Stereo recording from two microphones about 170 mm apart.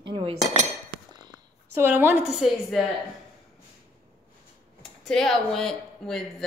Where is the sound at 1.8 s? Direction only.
10° right (ahead or behind).